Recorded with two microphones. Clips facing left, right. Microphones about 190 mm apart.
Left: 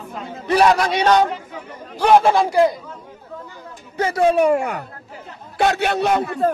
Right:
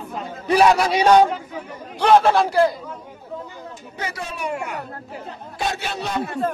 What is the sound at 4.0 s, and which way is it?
Speech, 55° left (ahead or behind).